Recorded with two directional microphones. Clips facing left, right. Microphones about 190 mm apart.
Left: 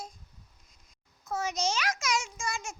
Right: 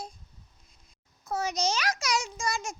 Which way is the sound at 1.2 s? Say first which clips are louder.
Right 2 dB; 35° right (ahead or behind).